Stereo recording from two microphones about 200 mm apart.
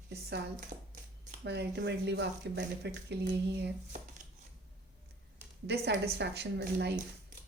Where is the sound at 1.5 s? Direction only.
60° right (ahead or behind).